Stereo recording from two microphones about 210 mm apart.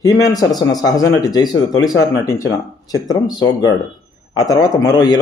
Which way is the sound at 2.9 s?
20° left (ahead or behind).